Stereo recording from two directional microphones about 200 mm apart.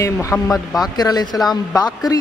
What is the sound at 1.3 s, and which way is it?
Speech, centre (ahead or behind).